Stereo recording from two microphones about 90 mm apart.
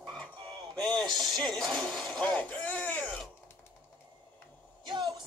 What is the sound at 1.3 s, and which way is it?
Speech, 5° left (ahead or behind).